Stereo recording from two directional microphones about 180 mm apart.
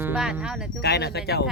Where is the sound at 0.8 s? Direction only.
65° left (ahead or behind).